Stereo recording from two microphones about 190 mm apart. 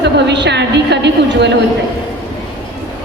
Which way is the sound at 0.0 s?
65° right (ahead or behind).